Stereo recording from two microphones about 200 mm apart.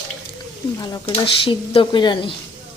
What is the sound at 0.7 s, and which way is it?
Dishes, 15° left (ahead or behind).